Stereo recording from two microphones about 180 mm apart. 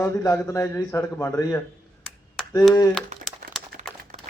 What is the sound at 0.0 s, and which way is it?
Speech, 15° left (ahead or behind).